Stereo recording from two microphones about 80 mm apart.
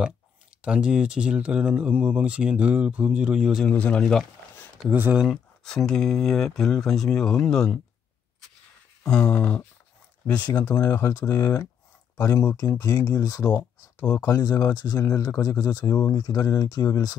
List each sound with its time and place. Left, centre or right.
0.6 s speech: centre
3.7 s speech: centre
4.0 s speech: centre
4.8 s speech: right
5.3 s speech: centre
9.0 s speech: centre
11.0 s speech: left
13.5 s speech: left
14.2 s speech: left
15.0 s speech: left